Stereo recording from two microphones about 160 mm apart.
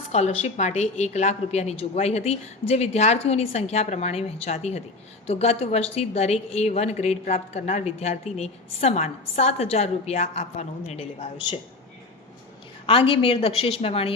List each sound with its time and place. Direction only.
0.1 s a woman's voice: 40° left (ahead or behind)
12.8 s a woman's voice: 35° left (ahead or behind)